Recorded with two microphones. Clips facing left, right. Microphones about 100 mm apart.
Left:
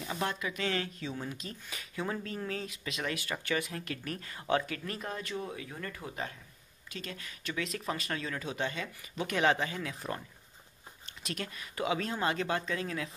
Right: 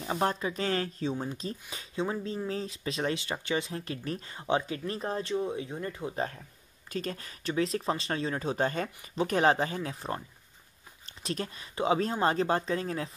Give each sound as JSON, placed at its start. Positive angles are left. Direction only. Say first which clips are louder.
{"t": 0.0, "sound": "speech", "louder": "right 5 dB", "side_deg": -35}
{"t": 6.9, "sound": "speech", "louder": "right 8 dB", "side_deg": -40}
{"t": 11.2, "sound": "speech", "louder": "right 5 dB", "side_deg": -30}